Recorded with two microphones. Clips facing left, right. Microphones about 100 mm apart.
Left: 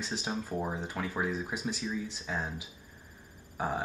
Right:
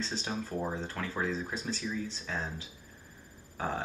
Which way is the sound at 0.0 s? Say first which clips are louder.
Even; 15° left (ahead or behind).